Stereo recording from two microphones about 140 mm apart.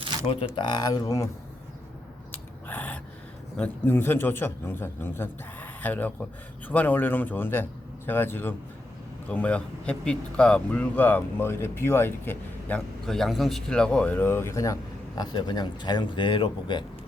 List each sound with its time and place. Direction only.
0.5 s speech: 30° left (ahead or behind)
2.3 s gasp: 10° left (ahead or behind)
3.6 s speech: 15° left (ahead or behind); by 16.8 s 35° left (ahead or behind)